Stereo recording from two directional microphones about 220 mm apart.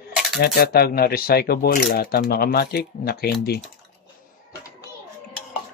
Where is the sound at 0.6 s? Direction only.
45° left (ahead or behind).